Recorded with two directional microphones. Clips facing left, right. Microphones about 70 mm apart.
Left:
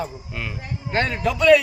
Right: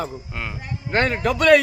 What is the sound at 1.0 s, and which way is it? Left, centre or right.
Speech, right.